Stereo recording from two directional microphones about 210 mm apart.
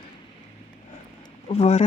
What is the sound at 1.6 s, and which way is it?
Speech, 30° left (ahead or behind).